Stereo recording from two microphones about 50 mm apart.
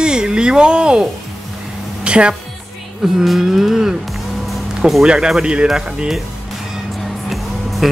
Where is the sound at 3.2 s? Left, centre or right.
Centre.